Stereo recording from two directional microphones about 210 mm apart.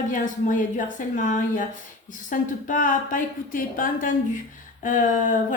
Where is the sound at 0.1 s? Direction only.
40° left (ahead or behind).